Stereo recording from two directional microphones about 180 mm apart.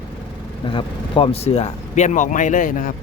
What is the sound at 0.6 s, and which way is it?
Speech, 30° left (ahead or behind).